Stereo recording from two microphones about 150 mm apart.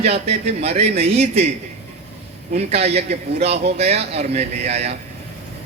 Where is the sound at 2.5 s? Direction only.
45° right (ahead or behind).